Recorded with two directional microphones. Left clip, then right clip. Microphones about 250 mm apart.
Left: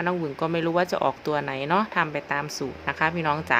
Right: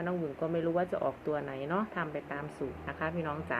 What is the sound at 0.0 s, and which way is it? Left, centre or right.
Speech, left.